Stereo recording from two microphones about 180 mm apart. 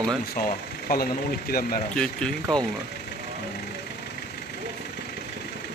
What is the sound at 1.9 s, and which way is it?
Speech, 5° left (ahead or behind).